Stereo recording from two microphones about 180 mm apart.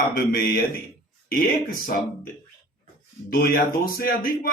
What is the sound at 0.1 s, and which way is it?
Speech, 55° left (ahead or behind).